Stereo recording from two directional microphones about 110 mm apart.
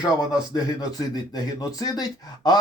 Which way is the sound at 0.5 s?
35° left (ahead or behind).